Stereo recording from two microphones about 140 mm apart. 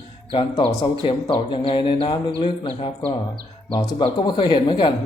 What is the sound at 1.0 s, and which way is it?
Speech, 35° left (ahead or behind).